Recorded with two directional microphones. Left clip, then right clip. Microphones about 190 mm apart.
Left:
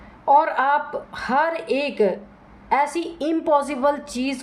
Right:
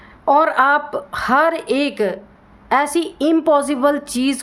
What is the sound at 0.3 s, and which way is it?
A woman's voice, 45° right (ahead or behind).